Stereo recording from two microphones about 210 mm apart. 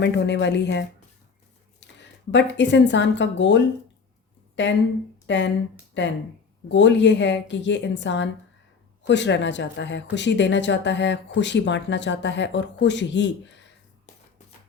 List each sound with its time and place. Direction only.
0.0 s speech: 55° left (ahead or behind)
2.0 s speech: 55° left (ahead or behind)